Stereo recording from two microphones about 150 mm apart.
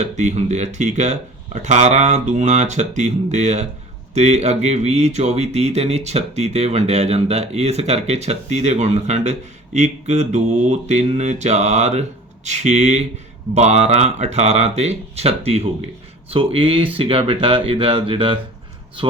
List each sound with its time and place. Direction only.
0.0 s speech: 50° right (ahead or behind)